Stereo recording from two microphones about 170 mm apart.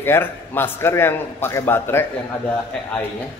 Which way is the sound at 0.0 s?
15° left (ahead or behind).